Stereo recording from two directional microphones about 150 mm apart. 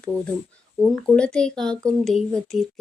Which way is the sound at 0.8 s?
Centre (ahead or behind).